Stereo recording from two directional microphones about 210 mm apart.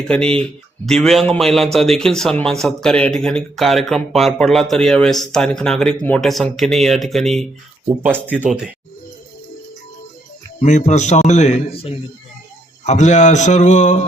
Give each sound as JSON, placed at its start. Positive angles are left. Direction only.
{"t": 0.1, "sound": "a man's voice", "side_deg": 5}
{"t": 7.9, "sound": "speech", "side_deg": -10}
{"t": 10.6, "sound": "a man's voice", "side_deg": 35}